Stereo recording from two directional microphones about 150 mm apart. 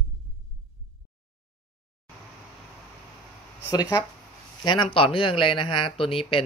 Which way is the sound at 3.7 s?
25° left (ahead or behind).